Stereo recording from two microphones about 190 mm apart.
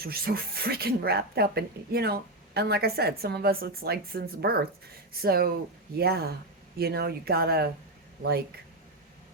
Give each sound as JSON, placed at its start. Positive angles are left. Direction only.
{"t": 0.0, "sound": "speech", "side_deg": -55}